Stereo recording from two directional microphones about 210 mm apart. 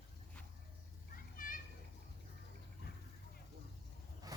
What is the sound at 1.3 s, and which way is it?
Children playing, 40° left (ahead or behind).